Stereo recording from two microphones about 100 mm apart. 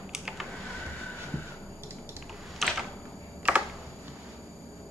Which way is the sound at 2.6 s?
5° left (ahead or behind).